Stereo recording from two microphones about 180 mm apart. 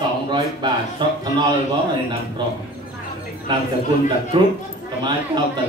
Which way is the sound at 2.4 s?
25° right (ahead or behind).